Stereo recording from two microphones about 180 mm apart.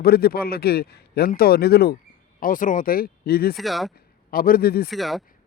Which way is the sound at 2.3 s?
50° left (ahead or behind).